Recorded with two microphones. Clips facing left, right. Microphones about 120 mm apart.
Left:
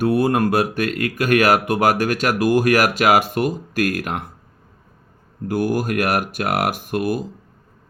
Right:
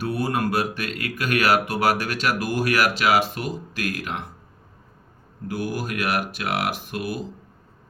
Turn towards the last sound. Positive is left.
turn(degrees=50)  # may be behind; listen again after turning